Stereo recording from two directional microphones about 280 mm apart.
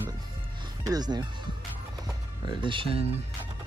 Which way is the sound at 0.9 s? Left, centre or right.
Centre.